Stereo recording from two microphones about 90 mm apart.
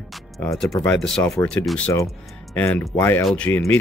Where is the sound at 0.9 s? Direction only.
5° left (ahead or behind).